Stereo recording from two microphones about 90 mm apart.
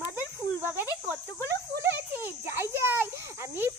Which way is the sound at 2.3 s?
25° right (ahead or behind).